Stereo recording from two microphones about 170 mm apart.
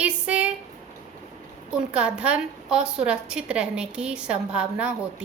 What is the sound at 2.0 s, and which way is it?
A woman's voice, 5° right (ahead or behind).